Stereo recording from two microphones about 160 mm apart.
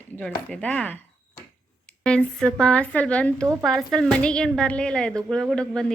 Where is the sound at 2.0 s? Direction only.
5° left (ahead or behind).